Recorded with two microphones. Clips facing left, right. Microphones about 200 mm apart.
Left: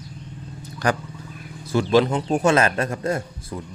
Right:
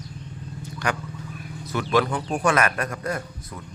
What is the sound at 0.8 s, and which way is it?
A man's voice, 35° left (ahead or behind).